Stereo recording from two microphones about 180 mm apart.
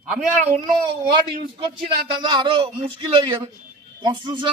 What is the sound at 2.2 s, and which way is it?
A man's voice, 25° right (ahead or behind).